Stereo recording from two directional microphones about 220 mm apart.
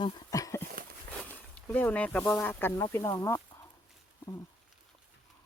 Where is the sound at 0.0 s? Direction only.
15° left (ahead or behind).